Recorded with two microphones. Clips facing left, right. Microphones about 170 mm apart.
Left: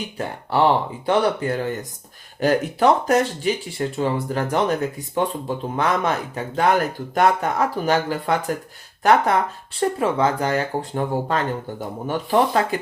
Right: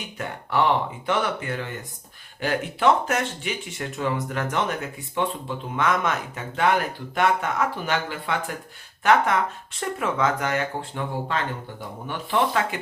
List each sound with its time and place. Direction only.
0.2 s speech: 30° left (ahead or behind)